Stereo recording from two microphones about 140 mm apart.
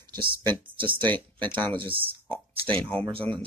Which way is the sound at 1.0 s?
10° left (ahead or behind).